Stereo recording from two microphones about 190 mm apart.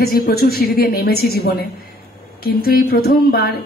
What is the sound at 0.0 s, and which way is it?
A woman's voice, 55° left (ahead or behind).